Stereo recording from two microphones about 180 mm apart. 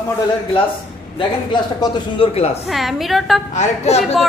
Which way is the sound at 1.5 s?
25° left (ahead or behind).